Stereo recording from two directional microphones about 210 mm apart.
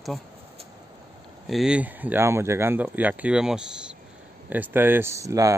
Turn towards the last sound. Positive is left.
turn(degrees=-15)  # may be behind; listen again after turning